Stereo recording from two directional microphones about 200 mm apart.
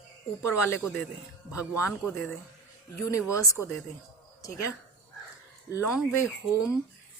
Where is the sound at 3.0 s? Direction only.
15° left (ahead or behind).